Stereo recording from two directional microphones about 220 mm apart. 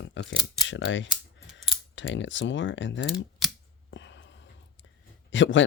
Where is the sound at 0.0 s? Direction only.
55° left (ahead or behind).